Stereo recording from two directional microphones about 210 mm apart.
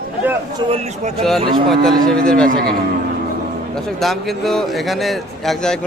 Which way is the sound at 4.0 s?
Centre (ahead or behind).